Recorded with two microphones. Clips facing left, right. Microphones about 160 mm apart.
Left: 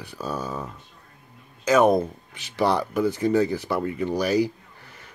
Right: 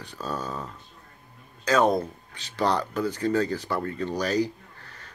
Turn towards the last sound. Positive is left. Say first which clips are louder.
# even
turn(degrees=15)  # may be behind; listen again after turning